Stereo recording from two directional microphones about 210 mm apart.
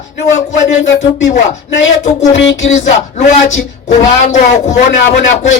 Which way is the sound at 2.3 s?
60° left (ahead or behind).